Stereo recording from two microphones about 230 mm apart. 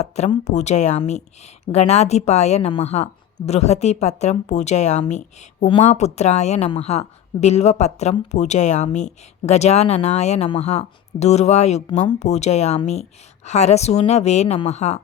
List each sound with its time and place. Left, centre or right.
0.0 s speech: left